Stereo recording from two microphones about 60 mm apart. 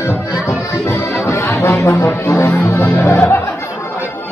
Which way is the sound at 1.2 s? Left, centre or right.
Left.